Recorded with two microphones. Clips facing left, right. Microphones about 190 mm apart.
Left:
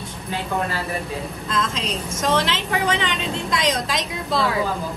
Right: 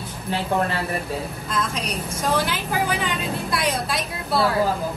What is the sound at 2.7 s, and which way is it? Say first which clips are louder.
Speech: left 2 dB; centre (ahead or behind).